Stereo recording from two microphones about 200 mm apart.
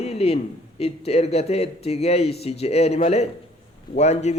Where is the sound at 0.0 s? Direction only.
30° left (ahead or behind).